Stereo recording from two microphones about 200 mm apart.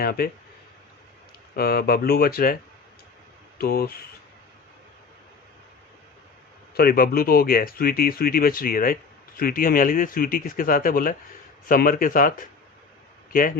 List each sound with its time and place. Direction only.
0.0 s speech: 50° left (ahead or behind)
1.5 s speech: 50° left (ahead or behind)
3.6 s speech: 50° left (ahead or behind)
6.7 s speech: 50° left (ahead or behind)